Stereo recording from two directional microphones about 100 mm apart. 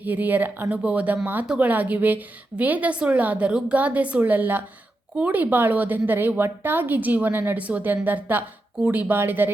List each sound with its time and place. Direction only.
0.0 s a woman's voice: 20° right (ahead or behind)